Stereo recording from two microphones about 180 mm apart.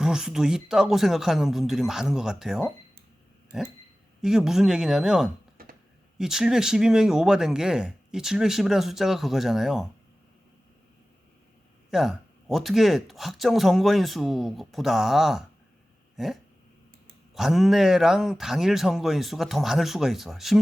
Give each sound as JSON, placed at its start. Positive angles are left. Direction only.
{"t": 0.0, "sound": "speech", "side_deg": -5}
{"t": 5.6, "sound": "a sound", "side_deg": -55}
{"t": 6.1, "sound": "speech", "side_deg": -5}
{"t": 11.9, "sound": "speech", "side_deg": 0}
{"t": 16.1, "sound": "dog", "side_deg": 0}
{"t": 17.3, "sound": "speech", "side_deg": 0}